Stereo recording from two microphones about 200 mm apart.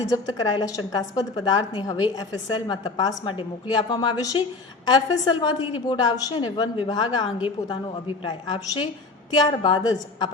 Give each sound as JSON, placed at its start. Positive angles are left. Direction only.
{"t": 0.0, "sound": "a woman's voice", "side_deg": 20}